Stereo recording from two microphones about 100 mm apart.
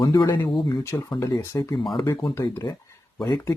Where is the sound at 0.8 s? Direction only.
30° left (ahead or behind).